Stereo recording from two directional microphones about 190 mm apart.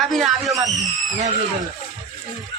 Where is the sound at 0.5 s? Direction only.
20° right (ahead or behind).